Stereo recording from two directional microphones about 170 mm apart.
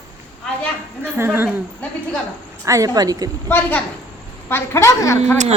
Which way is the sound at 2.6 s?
20° right (ahead or behind).